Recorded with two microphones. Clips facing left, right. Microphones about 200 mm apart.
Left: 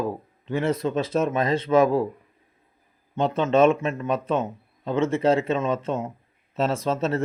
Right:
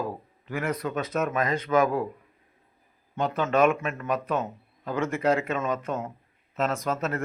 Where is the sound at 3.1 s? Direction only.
20° left (ahead or behind).